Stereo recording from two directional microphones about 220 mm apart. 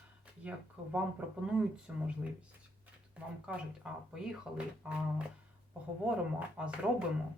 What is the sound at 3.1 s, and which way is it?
Speech, 5° right (ahead or behind).